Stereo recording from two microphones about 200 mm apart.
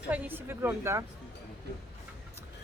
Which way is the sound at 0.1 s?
10° right (ahead or behind).